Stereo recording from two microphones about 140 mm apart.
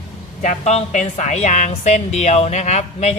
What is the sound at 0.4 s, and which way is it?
A woman's voice, 55° left (ahead or behind).